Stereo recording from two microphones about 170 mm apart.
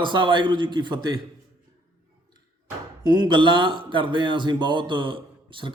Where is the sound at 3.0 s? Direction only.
25° right (ahead or behind).